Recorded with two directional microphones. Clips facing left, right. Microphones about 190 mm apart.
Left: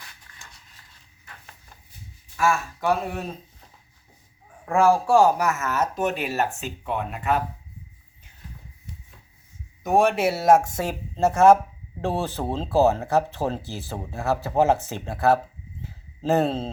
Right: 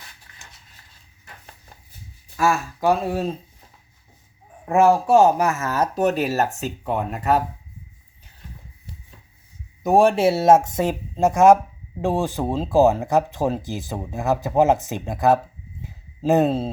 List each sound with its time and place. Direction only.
2.3 s speech: 35° right (ahead or behind)
4.6 s speech: 20° right (ahead or behind); by 7.4 s 40° right (ahead or behind)
9.8 s speech: 35° right (ahead or behind); by 15.4 s 15° right (ahead or behind)
15.8 s a sound: 15° right (ahead or behind)